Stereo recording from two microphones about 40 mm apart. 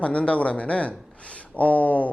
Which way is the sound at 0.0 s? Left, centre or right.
Left.